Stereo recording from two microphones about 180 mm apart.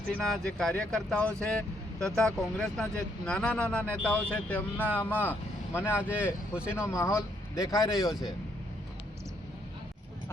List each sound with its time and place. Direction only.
0.2 s speech: 5° left (ahead or behind)
6.0 s speech: 5° right (ahead or behind)
6.7 s speech: 15° left (ahead or behind)